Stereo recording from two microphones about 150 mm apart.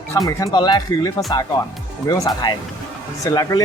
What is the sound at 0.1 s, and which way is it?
Speech, 20° left (ahead or behind).